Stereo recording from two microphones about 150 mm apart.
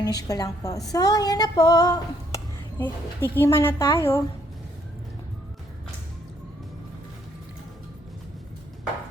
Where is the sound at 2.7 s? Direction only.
15° left (ahead or behind).